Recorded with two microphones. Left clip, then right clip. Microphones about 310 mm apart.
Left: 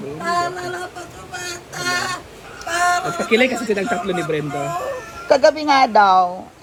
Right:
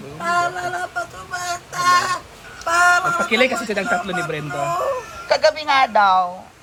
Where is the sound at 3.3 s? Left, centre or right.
Right.